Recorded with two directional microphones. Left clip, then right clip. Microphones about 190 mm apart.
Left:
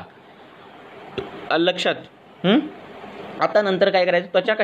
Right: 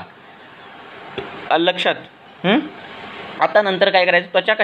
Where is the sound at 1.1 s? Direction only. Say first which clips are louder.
Right 4 dB; 30° left (ahead or behind).